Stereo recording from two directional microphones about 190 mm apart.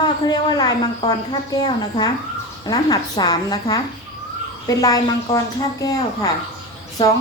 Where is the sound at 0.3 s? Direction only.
20° left (ahead or behind).